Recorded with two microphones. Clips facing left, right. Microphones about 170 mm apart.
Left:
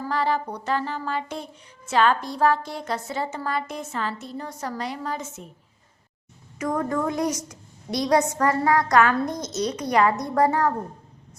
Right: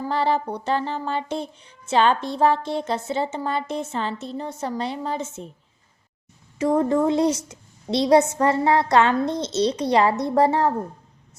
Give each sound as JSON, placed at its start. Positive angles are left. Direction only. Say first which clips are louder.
{"t": 0.0, "sound": "a woman's voice", "louder": "right 2 dB", "side_deg": -30}
{"t": 6.6, "sound": "a woman's voice", "louder": "right 6 dB", "side_deg": -30}